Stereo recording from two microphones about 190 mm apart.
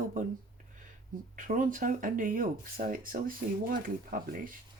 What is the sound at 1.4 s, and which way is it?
Speech, 45° right (ahead or behind).